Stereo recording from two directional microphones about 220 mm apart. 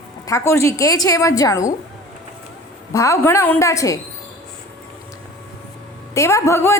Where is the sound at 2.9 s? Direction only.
15° left (ahead or behind).